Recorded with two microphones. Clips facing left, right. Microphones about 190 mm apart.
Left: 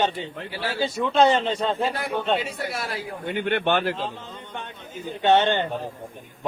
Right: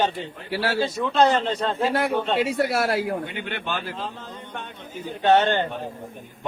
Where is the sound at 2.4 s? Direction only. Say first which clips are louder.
Right 8 dB; 70° right (ahead or behind).